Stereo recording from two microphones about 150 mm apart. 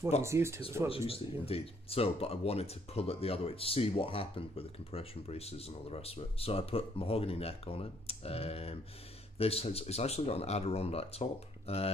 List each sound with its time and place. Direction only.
0.2 s speech: 20° right (ahead or behind)
0.8 s speech: 40° left (ahead or behind)